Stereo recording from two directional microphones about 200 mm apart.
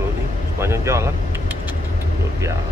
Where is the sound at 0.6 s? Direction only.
15° right (ahead or behind).